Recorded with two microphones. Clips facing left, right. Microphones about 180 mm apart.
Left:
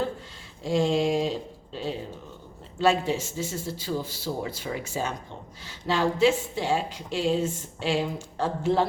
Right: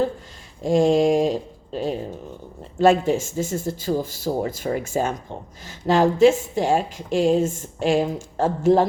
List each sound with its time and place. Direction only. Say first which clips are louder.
0.6 s a woman's voice: right 7 dB; 45° right (ahead or behind)